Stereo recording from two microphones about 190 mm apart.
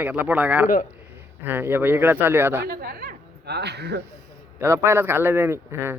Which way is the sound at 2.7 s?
50° right (ahead or behind).